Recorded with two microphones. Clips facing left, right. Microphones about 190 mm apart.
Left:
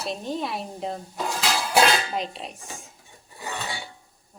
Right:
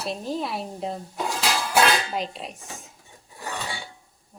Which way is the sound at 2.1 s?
Centre (ahead or behind).